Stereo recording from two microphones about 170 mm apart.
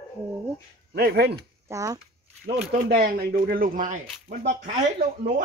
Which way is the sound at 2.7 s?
60° right (ahead or behind).